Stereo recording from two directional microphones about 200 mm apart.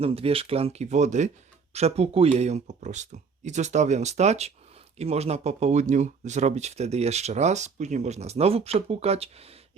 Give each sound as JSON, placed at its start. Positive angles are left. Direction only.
{"t": 0.0, "sound": "speech", "side_deg": -30}